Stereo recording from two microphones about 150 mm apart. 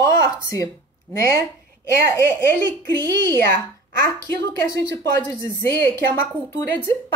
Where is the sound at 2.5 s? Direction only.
15° left (ahead or behind).